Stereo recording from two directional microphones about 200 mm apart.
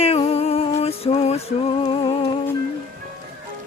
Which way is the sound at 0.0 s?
30° left (ahead or behind).